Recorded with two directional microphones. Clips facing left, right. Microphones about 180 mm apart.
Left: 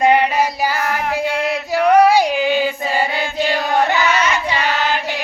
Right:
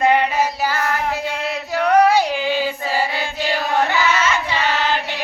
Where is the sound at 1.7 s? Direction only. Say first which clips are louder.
Left 2 dB; 10° left (ahead or behind).